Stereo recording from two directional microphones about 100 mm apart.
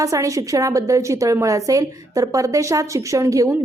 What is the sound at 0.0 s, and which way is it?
A woman's voice, 35° right (ahead or behind).